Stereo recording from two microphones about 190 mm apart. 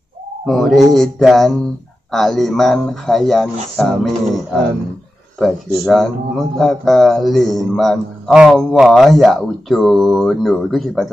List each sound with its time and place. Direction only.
0.5 s speech: centre (ahead or behind)
5.4 s speech: centre (ahead or behind)